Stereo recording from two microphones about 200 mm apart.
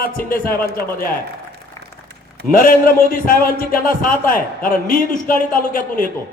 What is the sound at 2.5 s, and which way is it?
A man's voice, 45° left (ahead or behind).